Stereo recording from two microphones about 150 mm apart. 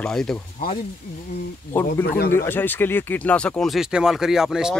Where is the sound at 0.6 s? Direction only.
60° left (ahead or behind).